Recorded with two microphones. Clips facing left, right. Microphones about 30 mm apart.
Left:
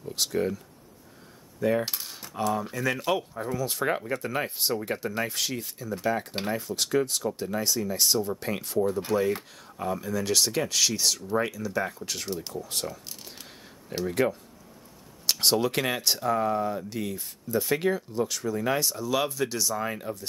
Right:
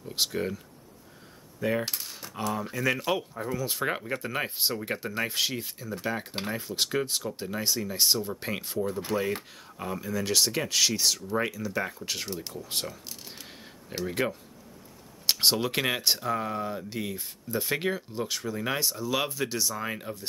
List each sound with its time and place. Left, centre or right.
0.3 s speech: centre
1.6 s speech: centre
14.0 s speech: centre